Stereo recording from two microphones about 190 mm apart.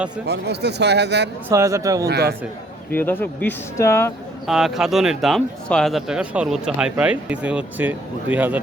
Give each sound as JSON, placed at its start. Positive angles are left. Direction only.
{"t": 0.3, "sound": "a man's voice", "side_deg": -60}
{"t": 1.5, "sound": "speech", "side_deg": -15}
{"t": 2.0, "sound": "a man's voice", "side_deg": -55}
{"t": 2.9, "sound": "speech", "side_deg": 10}
{"t": 4.4, "sound": "speech", "side_deg": 0}